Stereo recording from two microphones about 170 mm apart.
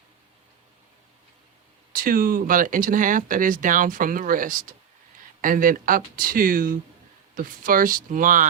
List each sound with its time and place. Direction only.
1.9 s speech: 55° right (ahead or behind)